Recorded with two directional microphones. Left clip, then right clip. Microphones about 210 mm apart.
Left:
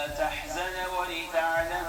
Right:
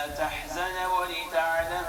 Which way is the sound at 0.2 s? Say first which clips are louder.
Right 1 dB; 30° left (ahead or behind).